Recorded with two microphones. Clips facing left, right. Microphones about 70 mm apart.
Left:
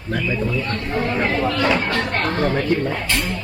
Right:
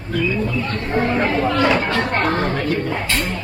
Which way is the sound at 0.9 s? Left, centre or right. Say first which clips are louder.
Right 3 dB; centre.